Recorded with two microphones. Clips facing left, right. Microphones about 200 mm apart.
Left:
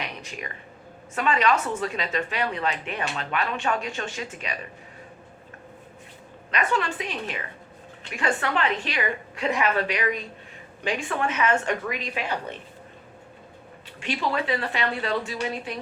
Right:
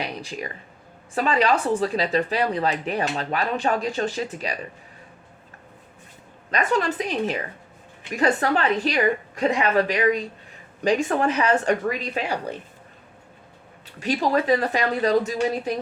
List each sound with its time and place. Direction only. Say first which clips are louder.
0.0 s a sound: right 5 dB; 35° right (ahead or behind)
1.1 s speech: right 2 dB; 35° right (ahead or behind)
6.5 s speech: right 3 dB; 40° right (ahead or behind)
14.0 s speech: right 5 dB; 40° right (ahead or behind)